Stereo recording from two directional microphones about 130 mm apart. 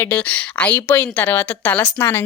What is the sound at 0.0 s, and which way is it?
A woman's voice, 15° left (ahead or behind).